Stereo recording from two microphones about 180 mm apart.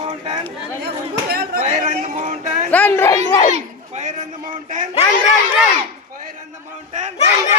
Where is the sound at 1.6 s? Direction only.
40° right (ahead or behind).